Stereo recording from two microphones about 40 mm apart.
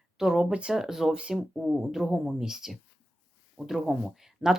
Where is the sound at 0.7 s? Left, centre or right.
Centre.